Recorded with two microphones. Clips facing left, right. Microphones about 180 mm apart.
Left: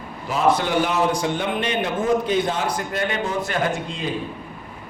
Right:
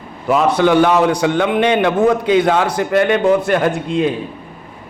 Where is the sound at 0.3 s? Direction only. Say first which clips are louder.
Right 7 dB; 65° right (ahead or behind).